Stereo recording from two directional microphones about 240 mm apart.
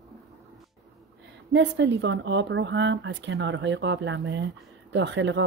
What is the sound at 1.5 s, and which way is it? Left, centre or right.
Speech, right.